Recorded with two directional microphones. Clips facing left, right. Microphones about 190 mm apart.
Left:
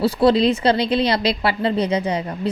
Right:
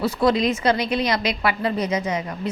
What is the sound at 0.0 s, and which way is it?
A woman's voice, 30° left (ahead or behind).